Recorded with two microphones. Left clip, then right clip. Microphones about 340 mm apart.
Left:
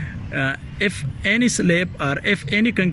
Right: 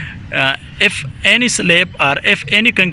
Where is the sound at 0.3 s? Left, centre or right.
Centre.